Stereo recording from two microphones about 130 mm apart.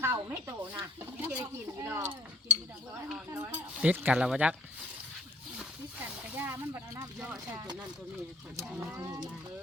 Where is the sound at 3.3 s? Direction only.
15° right (ahead or behind).